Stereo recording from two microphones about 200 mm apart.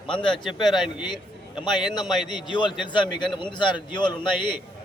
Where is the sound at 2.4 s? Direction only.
25° left (ahead or behind).